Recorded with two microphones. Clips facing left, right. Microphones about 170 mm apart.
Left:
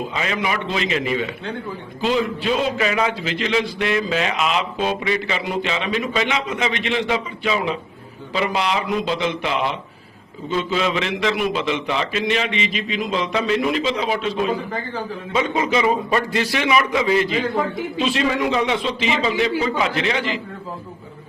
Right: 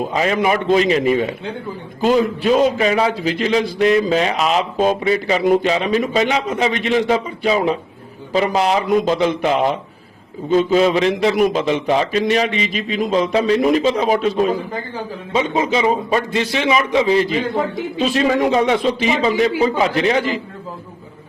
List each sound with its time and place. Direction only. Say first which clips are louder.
0.0 s a man's voice: right 7 dB; 45° right (ahead or behind)
5.4 s a man's voice: right 9 dB; 45° right (ahead or behind)